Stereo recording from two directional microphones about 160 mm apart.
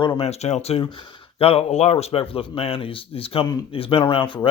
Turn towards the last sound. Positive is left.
turn(degrees=30)  # may be behind; listen again after turning